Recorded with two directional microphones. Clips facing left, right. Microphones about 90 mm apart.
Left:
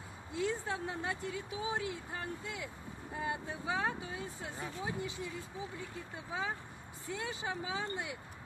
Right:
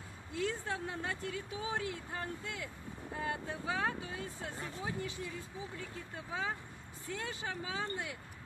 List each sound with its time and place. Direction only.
0.3 s speech: 20° left (ahead or behind)